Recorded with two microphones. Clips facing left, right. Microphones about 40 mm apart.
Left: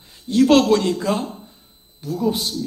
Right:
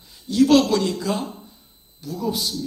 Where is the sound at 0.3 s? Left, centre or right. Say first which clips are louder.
Left 2 dB; left.